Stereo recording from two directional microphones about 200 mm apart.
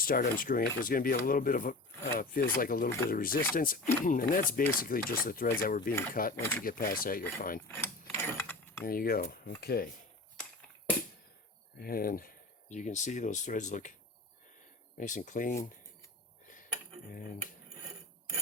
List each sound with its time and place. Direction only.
0.0 s speech: 45° left (ahead or behind)
6.3 s speech: 10° left (ahead or behind)
6.7 s speech: 45° left (ahead or behind)
7.7 s a sound: 10° left (ahead or behind)
8.8 s speech: 45° left (ahead or behind)
11.8 s speech: 45° left (ahead or behind)
14.9 s speech: 40° left (ahead or behind)